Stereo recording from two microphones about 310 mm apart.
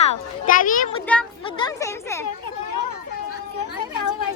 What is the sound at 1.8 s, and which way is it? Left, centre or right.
Speech, centre.